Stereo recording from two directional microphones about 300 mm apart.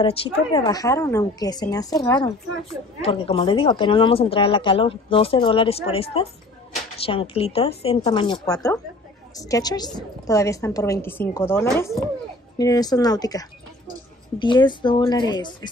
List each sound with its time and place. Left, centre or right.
0.0 s speech: centre